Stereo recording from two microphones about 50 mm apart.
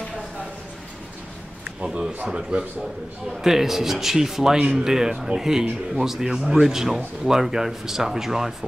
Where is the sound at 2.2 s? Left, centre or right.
Centre.